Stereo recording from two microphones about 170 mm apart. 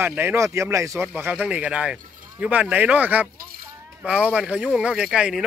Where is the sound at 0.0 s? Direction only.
10° right (ahead or behind).